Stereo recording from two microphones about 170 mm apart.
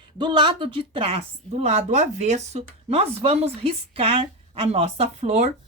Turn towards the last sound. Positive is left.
turn(degrees=-40)  # may be behind; listen again after turning